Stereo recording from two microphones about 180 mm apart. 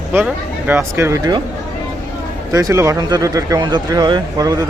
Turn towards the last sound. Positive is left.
turn(degrees=-20)  # may be behind; listen again after turning